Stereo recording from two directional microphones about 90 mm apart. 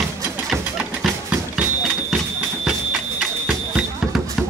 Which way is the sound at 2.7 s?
5° right (ahead or behind).